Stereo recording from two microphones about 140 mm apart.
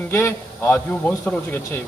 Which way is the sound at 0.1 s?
15° left (ahead or behind).